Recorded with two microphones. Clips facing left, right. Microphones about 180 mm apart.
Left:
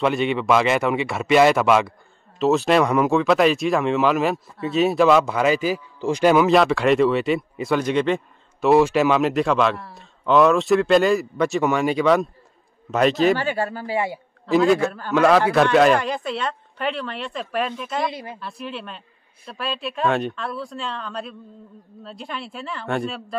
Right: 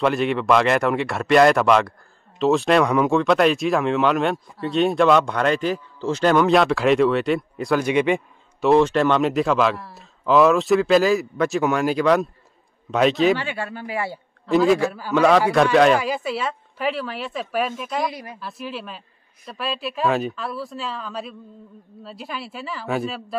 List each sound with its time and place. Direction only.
0.0 s speech: centre (ahead or behind)
7.8 s a man's voice: 10° right (ahead or behind)
8.5 s speech: 5° left (ahead or behind)
13.4 s speech: 40° left (ahead or behind)
13.9 s a man's voice: 15° left (ahead or behind)
14.4 s speech: centre (ahead or behind)
18.1 s a woman's voice: 25° left (ahead or behind)
18.4 s speech: centre (ahead or behind)